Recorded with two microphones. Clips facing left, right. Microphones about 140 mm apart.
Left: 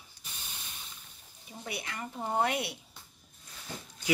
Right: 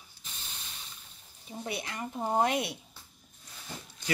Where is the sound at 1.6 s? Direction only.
25° right (ahead or behind).